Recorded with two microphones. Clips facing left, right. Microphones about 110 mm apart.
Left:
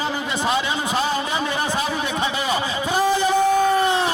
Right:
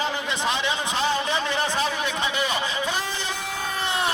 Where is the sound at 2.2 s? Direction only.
30° left (ahead or behind).